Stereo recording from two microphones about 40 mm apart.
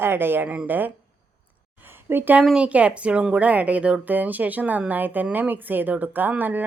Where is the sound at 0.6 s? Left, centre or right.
Right.